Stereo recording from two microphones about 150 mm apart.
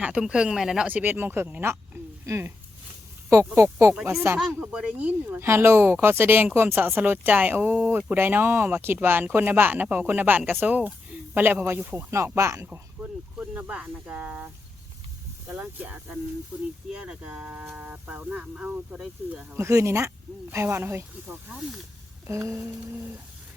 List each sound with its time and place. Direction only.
0.0 s speech: 5° right (ahead or behind)
4.4 s speech: 5° right (ahead or behind)